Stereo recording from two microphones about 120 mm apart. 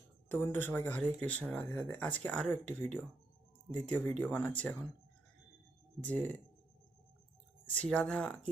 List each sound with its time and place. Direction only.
0.3 s speech: 15° left (ahead or behind)
7.7 s speech: 10° left (ahead or behind)